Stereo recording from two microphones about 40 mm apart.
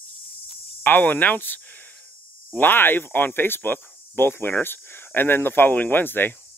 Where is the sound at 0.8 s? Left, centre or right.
Left.